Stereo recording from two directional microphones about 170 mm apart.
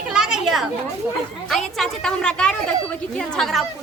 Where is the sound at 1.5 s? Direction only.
Centre (ahead or behind).